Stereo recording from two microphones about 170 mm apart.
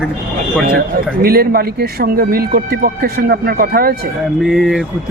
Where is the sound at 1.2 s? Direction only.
60° right (ahead or behind).